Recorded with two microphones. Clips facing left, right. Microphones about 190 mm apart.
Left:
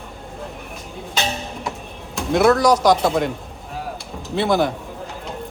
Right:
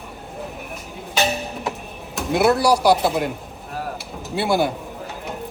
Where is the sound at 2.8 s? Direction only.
5° right (ahead or behind).